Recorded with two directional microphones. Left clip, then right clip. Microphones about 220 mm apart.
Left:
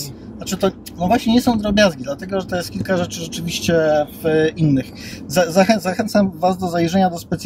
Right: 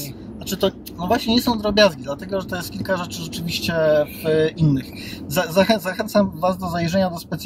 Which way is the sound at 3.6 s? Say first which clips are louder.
Left 2 dB; 20° left (ahead or behind).